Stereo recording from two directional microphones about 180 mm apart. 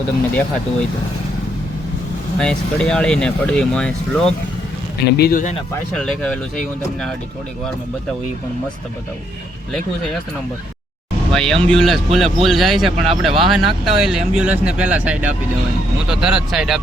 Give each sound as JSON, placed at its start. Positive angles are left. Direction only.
{"t": 2.4, "sound": "speech", "side_deg": 5}
{"t": 4.9, "sound": "speech", "side_deg": 60}
{"t": 5.9, "sound": "speech", "side_deg": 0}
{"t": 11.3, "sound": "speech", "side_deg": 0}